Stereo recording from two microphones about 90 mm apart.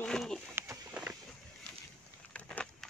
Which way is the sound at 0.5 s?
30° right (ahead or behind).